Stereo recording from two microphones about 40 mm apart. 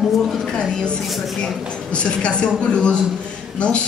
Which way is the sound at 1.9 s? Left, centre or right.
Left.